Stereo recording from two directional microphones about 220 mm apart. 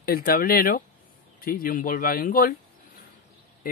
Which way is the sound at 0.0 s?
45° left (ahead or behind).